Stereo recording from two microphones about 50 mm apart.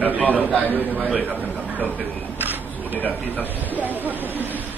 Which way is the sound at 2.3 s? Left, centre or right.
Right.